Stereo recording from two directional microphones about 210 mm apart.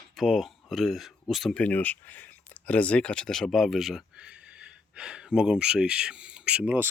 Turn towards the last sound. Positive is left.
turn(degrees=-10)  # may be behind; listen again after turning